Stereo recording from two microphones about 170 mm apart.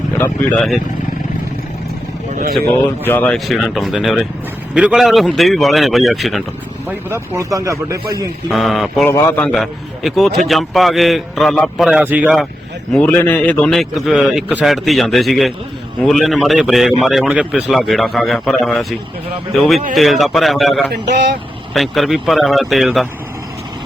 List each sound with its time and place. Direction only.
0.2 s a man's voice: 5° left (ahead or behind)
3.0 s a man's voice: 10° left (ahead or behind)
6.8 s speech: 15° right (ahead or behind)
8.4 s a man's voice: centre (ahead or behind)
9.0 s a man's voice: 10° left (ahead or behind); by 12.5 s 5° right (ahead or behind)
12.9 s a man's voice: 10° left (ahead or behind)